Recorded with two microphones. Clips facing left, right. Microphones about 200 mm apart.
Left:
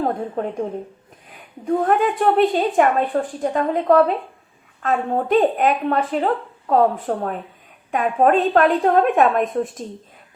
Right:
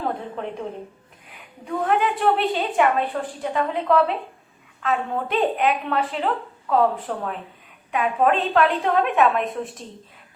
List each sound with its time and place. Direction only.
0.4 s a woman's voice: 45° left (ahead or behind)
1.6 s a woman's voice: 45° left (ahead or behind)